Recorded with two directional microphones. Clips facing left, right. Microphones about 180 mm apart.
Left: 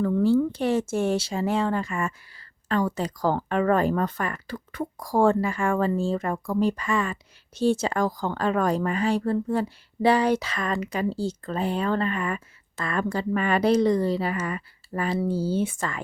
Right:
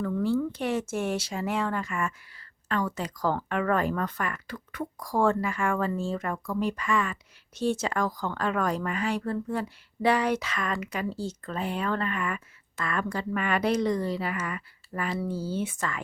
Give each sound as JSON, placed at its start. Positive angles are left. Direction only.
{"t": 0.0, "sound": "speech", "side_deg": 30}